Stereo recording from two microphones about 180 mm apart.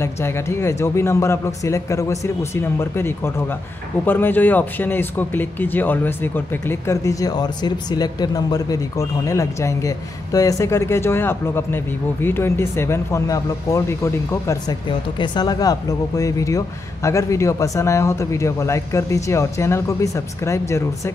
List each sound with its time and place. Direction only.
0.0 s speech: 15° left (ahead or behind)